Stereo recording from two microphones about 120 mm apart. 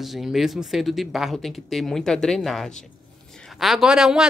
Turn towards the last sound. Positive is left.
turn(degrees=-5)  # may be behind; listen again after turning